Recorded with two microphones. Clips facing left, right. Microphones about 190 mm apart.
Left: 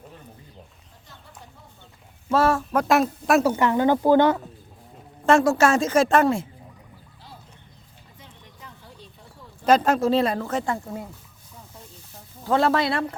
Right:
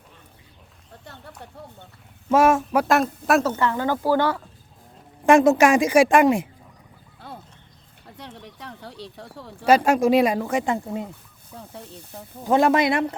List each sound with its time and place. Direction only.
1.0 s a sound: 65° right (ahead or behind)
2.3 s speech: 20° right (ahead or behind)
2.8 s speech: centre (ahead or behind)
3.4 s speech: 15° left (ahead or behind)
5.2 s speech: 15° right (ahead or behind)
8.2 s a sound: 75° right (ahead or behind)
9.6 s speech: 10° right (ahead or behind)
11.5 s hiss: 65° right (ahead or behind)
12.5 s speech: 15° right (ahead or behind)